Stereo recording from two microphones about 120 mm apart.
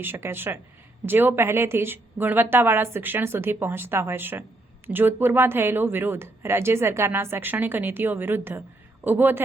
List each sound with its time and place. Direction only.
0.0 s speech: 20° right (ahead or behind)